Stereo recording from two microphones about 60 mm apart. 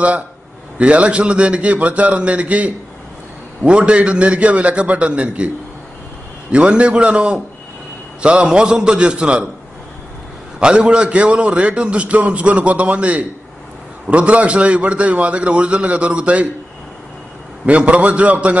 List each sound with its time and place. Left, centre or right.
0.7 s a man's voice: centre
6.5 s a man's voice: centre
10.6 s a man's voice: centre
17.6 s a man's voice: right